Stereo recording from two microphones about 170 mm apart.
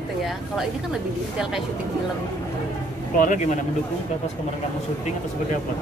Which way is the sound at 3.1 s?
50° left (ahead or behind).